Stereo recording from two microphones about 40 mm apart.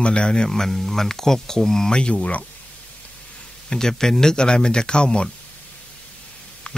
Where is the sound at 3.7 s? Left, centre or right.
Centre.